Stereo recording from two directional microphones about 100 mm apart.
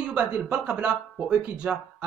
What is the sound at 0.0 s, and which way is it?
Speech, 15° right (ahead or behind).